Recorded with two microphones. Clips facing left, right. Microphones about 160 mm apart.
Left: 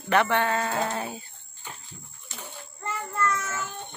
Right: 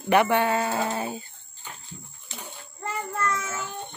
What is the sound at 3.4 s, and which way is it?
Child singing, 15° right (ahead or behind).